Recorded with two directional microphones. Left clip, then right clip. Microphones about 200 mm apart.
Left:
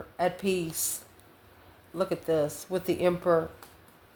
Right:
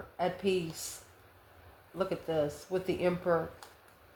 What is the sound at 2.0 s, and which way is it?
Speech, 45° left (ahead or behind).